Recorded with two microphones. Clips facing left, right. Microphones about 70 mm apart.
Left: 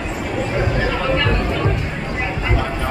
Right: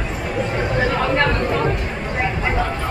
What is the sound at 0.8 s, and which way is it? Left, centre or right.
Chatter, right.